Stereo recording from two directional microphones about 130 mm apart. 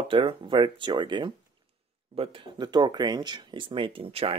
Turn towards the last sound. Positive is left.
turn(degrees=-50)  # may be behind; listen again after turning